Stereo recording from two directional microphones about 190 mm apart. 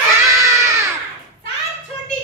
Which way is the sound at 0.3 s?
15° right (ahead or behind).